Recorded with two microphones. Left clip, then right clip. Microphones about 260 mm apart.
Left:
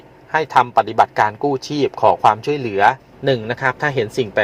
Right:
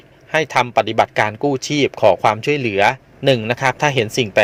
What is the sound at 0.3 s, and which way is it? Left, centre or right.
Speech, right.